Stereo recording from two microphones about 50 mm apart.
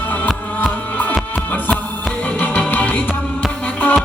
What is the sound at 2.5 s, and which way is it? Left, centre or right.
Music, left.